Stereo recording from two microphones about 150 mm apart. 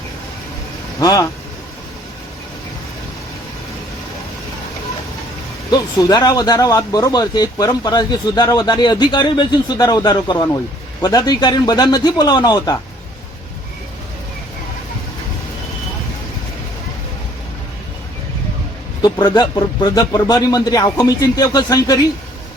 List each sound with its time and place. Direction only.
0.9 s speech: 20° left (ahead or behind)
5.7 s speech: 25° left (ahead or behind)
19.0 s speech: 30° left (ahead or behind)